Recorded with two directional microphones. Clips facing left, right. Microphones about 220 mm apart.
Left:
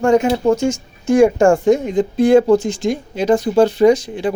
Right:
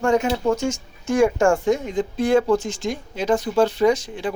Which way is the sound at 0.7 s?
10° left (ahead or behind).